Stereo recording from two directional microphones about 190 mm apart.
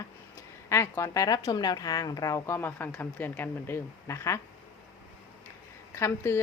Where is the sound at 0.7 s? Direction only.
15° left (ahead or behind).